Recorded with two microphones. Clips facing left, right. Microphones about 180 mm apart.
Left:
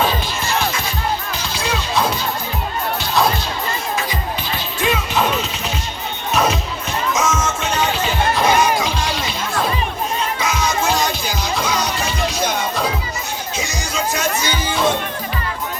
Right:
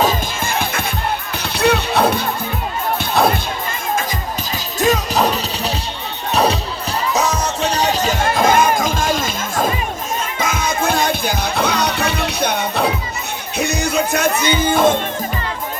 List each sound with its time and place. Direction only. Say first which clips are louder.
0.0 s music: right 2 dB; 50° right (ahead or behind)
4.5 s music: right 5 dB; 40° right (ahead or behind)